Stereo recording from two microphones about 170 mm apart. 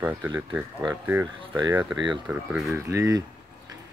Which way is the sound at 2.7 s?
15° right (ahead or behind).